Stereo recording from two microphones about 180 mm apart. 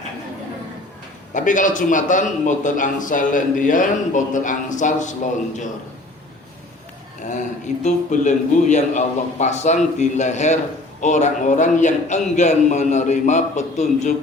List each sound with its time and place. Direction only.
1.3 s a man's voice: 45° left (ahead or behind)
7.9 s a man's voice: 40° left (ahead or behind)